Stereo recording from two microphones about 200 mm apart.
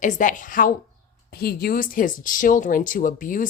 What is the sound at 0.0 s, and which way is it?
Speech, 40° left (ahead or behind).